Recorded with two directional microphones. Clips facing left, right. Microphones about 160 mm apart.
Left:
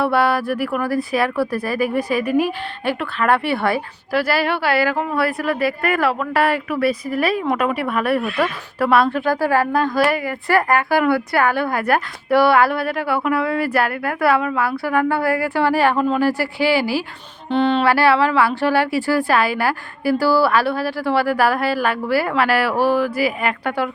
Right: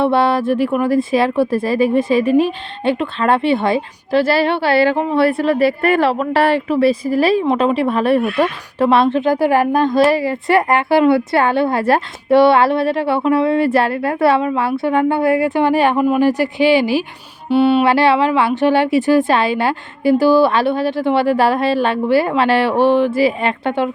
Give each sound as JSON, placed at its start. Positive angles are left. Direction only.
{"t": 0.0, "sound": "speech", "side_deg": -25}